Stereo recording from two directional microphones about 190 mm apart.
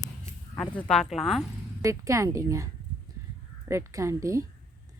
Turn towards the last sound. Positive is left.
turn(degrees=-15)  # may be behind; listen again after turning